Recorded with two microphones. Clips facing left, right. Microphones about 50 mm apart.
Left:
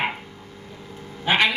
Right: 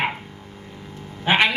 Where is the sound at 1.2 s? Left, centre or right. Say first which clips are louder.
Right 1 dB; right.